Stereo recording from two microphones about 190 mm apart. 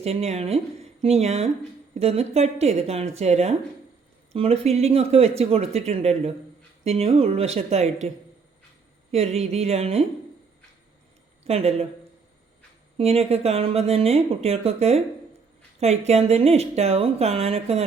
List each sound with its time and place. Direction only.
0.0 s a woman's voice: 35° right (ahead or behind)
9.1 s a woman's voice: 35° right (ahead or behind)
11.4 s a woman's voice: 35° right (ahead or behind)
13.0 s a woman's voice: 35° right (ahead or behind)